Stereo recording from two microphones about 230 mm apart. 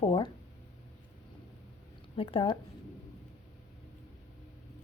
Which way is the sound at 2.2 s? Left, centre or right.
Left.